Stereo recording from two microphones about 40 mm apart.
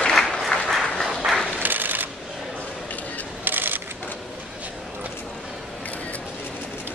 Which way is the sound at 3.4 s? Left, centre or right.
Right.